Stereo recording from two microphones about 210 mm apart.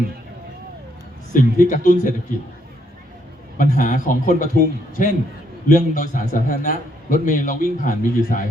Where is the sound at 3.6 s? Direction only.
40° left (ahead or behind).